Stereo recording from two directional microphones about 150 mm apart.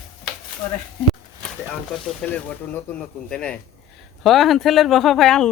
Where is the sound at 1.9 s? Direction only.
5° left (ahead or behind).